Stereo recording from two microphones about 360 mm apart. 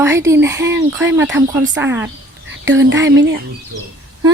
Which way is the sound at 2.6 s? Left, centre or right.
Right.